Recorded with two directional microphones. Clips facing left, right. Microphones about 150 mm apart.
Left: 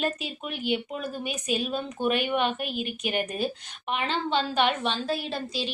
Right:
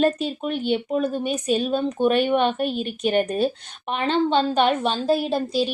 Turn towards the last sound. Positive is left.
turn(degrees=-45)  # may be behind; listen again after turning